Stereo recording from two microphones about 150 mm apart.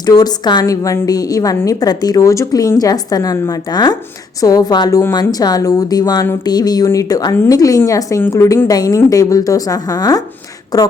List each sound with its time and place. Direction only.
0.0 s a woman's voice: 25° left (ahead or behind)